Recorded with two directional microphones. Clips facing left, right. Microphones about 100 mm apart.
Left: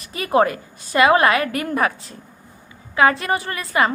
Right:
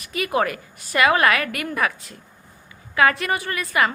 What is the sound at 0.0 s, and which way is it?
A woman's voice, 30° left (ahead or behind).